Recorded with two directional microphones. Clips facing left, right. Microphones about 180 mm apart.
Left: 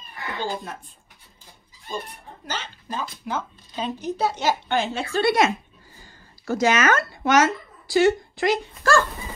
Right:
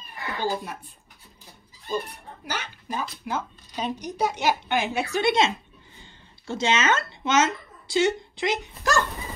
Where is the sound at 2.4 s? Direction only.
10° right (ahead or behind).